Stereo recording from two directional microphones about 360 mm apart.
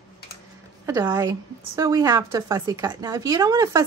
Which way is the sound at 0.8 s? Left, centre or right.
Centre.